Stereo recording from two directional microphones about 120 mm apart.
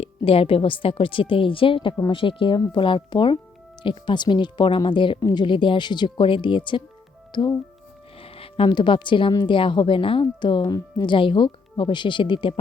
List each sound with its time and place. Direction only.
0.0 s a woman's voice: 50° left (ahead or behind)
8.2 s a woman's voice: 50° left (ahead or behind)